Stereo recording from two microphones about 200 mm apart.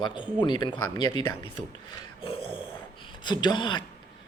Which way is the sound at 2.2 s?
25° left (ahead or behind).